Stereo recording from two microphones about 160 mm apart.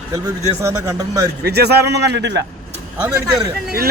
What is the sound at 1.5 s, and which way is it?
Speech, 90° right.